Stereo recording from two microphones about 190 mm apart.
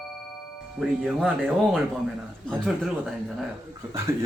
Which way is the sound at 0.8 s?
Centre (ahead or behind).